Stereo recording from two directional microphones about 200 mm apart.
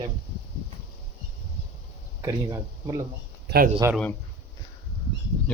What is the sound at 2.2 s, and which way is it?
Speech, 20° right (ahead or behind).